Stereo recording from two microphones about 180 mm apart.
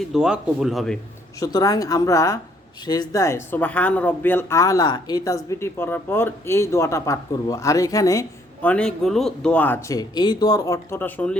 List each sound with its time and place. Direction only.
0.1 s speech: 5° right (ahead or behind)
1.4 s a woman's voice: 20° left (ahead or behind)
8.7 s a man's voice: 5° left (ahead or behind)